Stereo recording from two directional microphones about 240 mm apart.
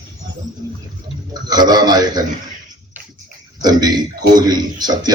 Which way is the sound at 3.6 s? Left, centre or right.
Centre.